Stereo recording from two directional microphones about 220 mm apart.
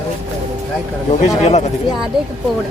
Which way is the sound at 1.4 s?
30° left (ahead or behind).